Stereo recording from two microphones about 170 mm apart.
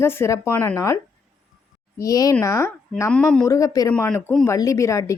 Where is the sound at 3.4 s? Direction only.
20° left (ahead or behind).